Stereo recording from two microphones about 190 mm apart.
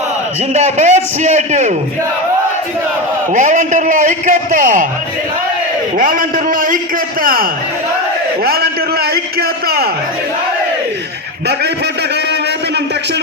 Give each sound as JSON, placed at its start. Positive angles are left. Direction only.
{"t": 0.5, "sound": "a man's voice", "side_deg": -40}
{"t": 3.3, "sound": "a man's voice", "side_deg": -40}
{"t": 6.0, "sound": "a man's voice", "side_deg": -45}
{"t": 8.4, "sound": "a sound", "side_deg": -55}